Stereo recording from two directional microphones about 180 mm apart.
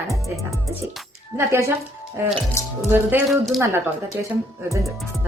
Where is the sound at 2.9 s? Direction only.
10° right (ahead or behind).